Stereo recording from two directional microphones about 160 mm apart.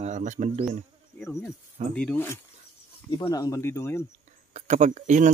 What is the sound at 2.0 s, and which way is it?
Speech, 10° left (ahead or behind).